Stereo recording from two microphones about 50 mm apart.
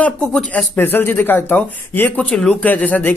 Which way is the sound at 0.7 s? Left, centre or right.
Left.